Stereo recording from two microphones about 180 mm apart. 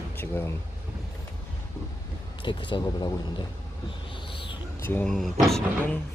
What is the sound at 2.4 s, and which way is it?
Speech, 25° left (ahead or behind).